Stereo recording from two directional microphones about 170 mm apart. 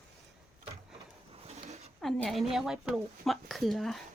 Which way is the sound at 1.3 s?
35° right (ahead or behind).